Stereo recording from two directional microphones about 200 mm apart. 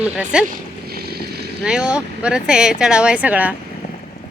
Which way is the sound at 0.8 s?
50° right (ahead or behind).